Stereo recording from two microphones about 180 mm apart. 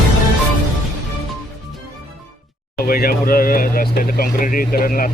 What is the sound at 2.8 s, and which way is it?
Speech, 55° left (ahead or behind).